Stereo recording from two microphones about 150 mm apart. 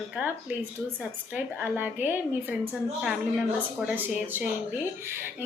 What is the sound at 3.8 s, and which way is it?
Speech, 10° right (ahead or behind).